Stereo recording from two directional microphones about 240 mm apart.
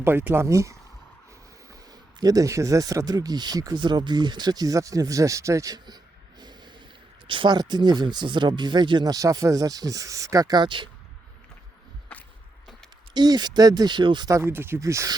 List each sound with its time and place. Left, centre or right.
0.0 s speech: centre
2.2 s speech: centre
6.4 s a sound: centre
7.3 s speech: centre
13.1 s speech: centre